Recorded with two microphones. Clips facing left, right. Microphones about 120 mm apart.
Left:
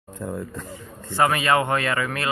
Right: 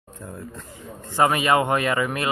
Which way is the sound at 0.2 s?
90° left.